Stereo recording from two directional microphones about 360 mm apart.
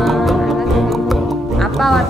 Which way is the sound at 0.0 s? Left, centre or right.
Centre.